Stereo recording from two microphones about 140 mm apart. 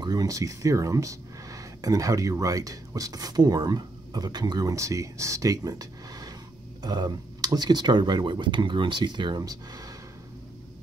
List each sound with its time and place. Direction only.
0.0 s speech: 25° right (ahead or behind)